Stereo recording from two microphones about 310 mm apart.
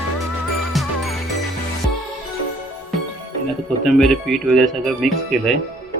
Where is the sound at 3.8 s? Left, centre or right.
Centre.